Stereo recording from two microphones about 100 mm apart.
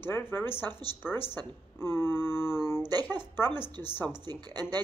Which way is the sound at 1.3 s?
25° left (ahead or behind).